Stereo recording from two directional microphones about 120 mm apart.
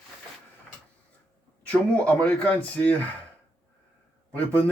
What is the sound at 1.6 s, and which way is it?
Speech, 10° left (ahead or behind).